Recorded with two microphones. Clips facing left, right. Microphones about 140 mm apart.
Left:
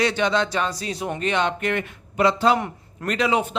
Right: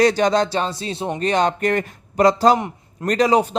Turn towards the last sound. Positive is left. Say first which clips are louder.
# right 5 dB
turn(degrees=-40)  # may be behind; listen again after turning